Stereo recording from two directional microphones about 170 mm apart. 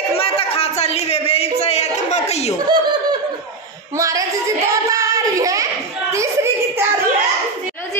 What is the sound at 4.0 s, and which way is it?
A woman's voice, 20° right (ahead or behind).